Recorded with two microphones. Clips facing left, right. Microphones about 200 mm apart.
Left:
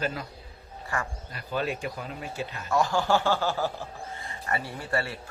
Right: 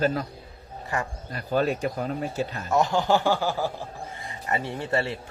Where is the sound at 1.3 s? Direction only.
40° right (ahead or behind).